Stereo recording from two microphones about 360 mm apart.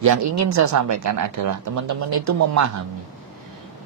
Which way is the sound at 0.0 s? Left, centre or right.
Right.